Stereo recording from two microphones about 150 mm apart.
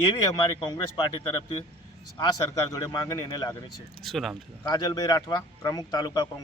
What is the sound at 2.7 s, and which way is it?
Speech, 25° left (ahead or behind).